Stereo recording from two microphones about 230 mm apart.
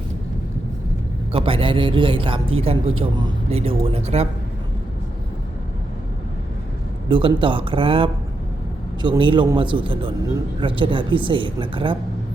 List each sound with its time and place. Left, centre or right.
1.3 s speech: right
7.1 s speech: right